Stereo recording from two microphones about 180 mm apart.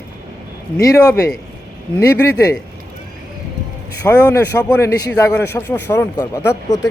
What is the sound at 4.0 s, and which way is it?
A man's voice, 10° left (ahead or behind).